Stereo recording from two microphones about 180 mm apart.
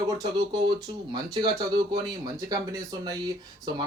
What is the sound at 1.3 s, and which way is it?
Speech, 25° right (ahead or behind).